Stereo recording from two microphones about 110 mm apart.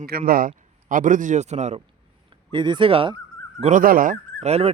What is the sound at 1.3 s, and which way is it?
Speech, 90° right.